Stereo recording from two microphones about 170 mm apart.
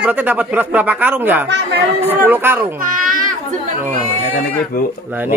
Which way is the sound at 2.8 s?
50° right (ahead or behind).